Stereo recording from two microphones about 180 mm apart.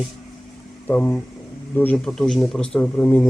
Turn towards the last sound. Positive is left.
turn(degrees=5)  # may be behind; listen again after turning